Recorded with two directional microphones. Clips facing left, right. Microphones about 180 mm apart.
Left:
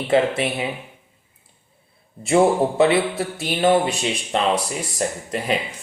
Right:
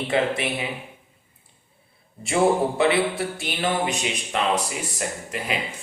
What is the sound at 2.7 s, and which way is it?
Speech, 25° left (ahead or behind).